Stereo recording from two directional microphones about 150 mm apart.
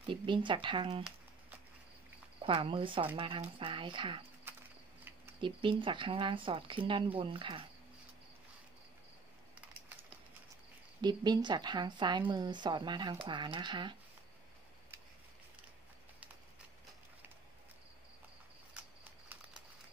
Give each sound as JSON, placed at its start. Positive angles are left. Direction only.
{"t": 0.0, "sound": "a woman's voice", "side_deg": -35}
{"t": 2.4, "sound": "a woman's voice", "side_deg": -35}
{"t": 5.4, "sound": "a woman's voice", "side_deg": -35}
{"t": 11.0, "sound": "a woman's voice", "side_deg": -30}
{"t": 18.8, "sound": "a sound", "side_deg": -10}